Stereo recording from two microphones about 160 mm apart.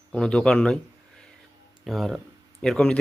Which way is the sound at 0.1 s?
5° left (ahead or behind).